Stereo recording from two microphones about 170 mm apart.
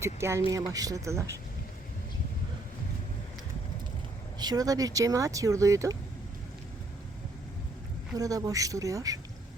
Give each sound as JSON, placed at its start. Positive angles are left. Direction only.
{"t": 0.0, "sound": "speech", "side_deg": -15}
{"t": 4.4, "sound": "speech", "side_deg": -25}
{"t": 8.1, "sound": "speech", "side_deg": -20}